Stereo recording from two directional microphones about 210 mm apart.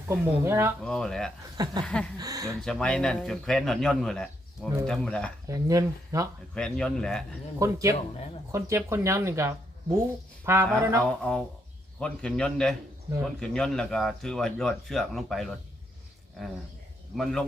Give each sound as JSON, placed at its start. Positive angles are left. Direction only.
{"t": 0.1, "sound": "speech", "side_deg": -10}
{"t": 0.9, "sound": "speech", "side_deg": 0}
{"t": 1.5, "sound": "chuckle", "side_deg": -20}
{"t": 1.8, "sound": "speech", "side_deg": 5}
{"t": 2.1, "sound": "speech", "side_deg": -15}
{"t": 2.6, "sound": "speech", "side_deg": 5}
{"t": 5.5, "sound": "speech", "side_deg": -15}
{"t": 6.5, "sound": "speech", "side_deg": 5}
{"t": 7.6, "sound": "speech", "side_deg": -15}
{"t": 11.0, "sound": "speech", "side_deg": 0}
{"t": 17.1, "sound": "speech", "side_deg": -5}